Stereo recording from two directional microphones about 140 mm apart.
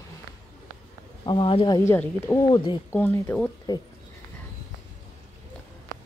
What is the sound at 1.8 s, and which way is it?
Speech, 15° left (ahead or behind).